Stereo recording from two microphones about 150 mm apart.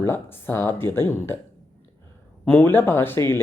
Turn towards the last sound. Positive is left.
turn(degrees=15)  # may be behind; listen again after turning